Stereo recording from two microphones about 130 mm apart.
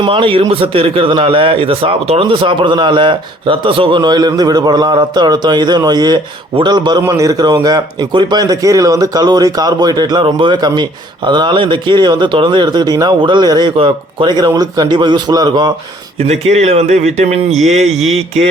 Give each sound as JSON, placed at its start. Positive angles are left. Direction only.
{"t": 0.0, "sound": "a man's voice", "side_deg": -45}
{"t": 16.1, "sound": "speech", "side_deg": -55}